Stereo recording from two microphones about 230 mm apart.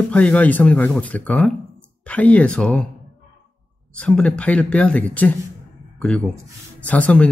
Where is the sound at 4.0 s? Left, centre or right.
Centre.